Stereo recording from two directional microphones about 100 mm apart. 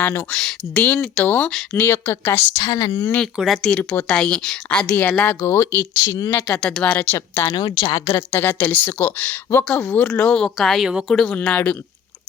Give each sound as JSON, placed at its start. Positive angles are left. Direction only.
{"t": 0.0, "sound": "speech", "side_deg": 25}
{"t": 0.3, "sound": "speech", "side_deg": 5}
{"t": 1.1, "sound": "speech", "side_deg": 20}
{"t": 2.6, "sound": "speech", "side_deg": 40}
{"t": 3.3, "sound": "speech", "side_deg": 0}
{"t": 3.7, "sound": "a woman's voice", "side_deg": 15}
{"t": 5.4, "sound": "speech", "side_deg": 25}
{"t": 6.5, "sound": "a woman's voice", "side_deg": 5}
{"t": 6.8, "sound": "speech", "side_deg": 20}
{"t": 7.5, "sound": "a woman's voice", "side_deg": 50}
{"t": 8.0, "sound": "speech", "side_deg": 25}
{"t": 10.1, "sound": "a woman's voice", "side_deg": 10}